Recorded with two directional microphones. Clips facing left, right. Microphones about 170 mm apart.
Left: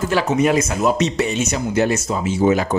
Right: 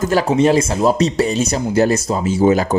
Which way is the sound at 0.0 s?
35° right (ahead or behind).